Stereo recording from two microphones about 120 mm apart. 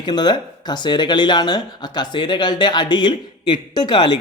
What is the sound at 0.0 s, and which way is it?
Speech, 35° left (ahead or behind).